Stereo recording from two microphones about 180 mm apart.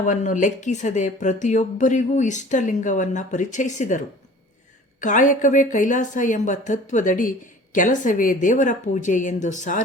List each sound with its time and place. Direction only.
0.0 s a woman's voice: 45° left (ahead or behind)